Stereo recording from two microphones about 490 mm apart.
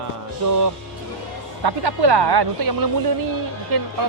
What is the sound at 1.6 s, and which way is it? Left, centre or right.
A woman's voice, right.